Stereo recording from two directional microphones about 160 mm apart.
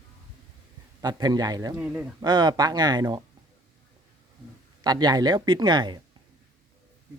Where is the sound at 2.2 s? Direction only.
25° right (ahead or behind).